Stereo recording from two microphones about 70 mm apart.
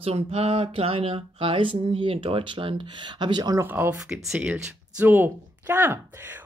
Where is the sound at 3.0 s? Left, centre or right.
Right.